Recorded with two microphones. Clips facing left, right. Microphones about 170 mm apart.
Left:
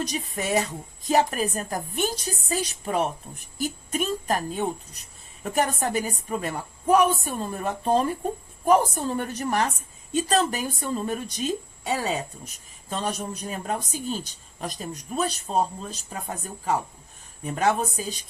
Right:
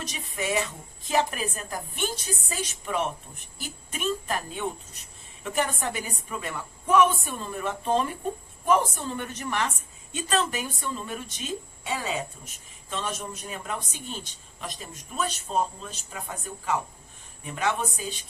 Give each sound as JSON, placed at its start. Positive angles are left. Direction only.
{"t": 0.0, "sound": "speech", "side_deg": 40}